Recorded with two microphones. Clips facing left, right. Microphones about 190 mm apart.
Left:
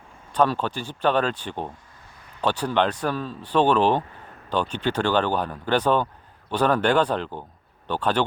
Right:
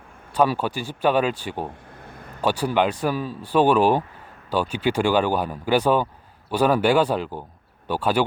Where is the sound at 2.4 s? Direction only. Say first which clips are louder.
Right 2 dB; 10° right (ahead or behind).